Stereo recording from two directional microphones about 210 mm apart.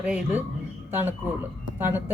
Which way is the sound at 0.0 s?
5° right (ahead or behind).